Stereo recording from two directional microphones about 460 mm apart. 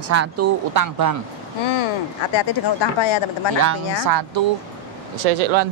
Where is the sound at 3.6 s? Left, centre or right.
Right.